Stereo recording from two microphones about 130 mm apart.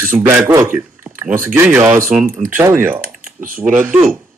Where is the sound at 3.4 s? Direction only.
90° right.